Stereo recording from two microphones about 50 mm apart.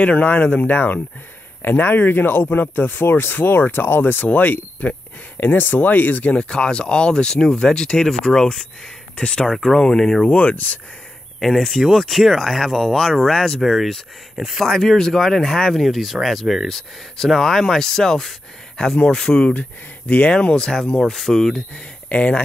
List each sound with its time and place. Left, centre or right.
0.0 s speech: left
4.3 s speech: left
6.3 s speech: centre
9.1 s speech: centre
10.2 s speech: left
11.3 s speech: centre
14.7 s speech: centre
15.8 s speech: centre
20.1 s speech: left
21.0 s speech: centre
21.7 s speech: left